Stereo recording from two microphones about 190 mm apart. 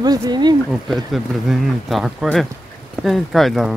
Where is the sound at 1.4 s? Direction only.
Centre (ahead or behind).